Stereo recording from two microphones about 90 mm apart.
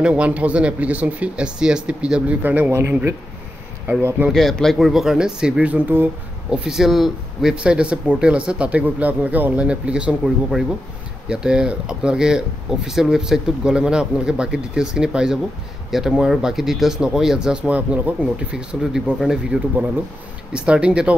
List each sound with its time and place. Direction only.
0.0 s speech: 15° right (ahead or behind)
2.7 s speech: 30° right (ahead or behind)
4.3 s speech: 5° left (ahead or behind); by 6.0 s 20° right (ahead or behind)
6.5 s speech: 5° right (ahead or behind)